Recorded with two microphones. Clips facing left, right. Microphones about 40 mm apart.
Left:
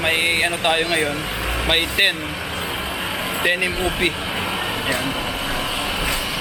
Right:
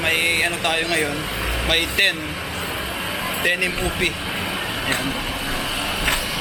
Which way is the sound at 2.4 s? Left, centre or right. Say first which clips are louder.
Left 1 dB; centre.